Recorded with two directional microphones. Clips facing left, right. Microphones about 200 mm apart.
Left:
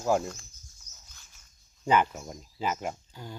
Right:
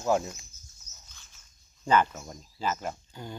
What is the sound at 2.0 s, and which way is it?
Speech, 10° left (ahead or behind).